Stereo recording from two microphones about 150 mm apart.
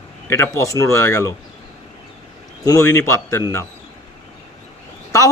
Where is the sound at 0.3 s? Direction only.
20° left (ahead or behind).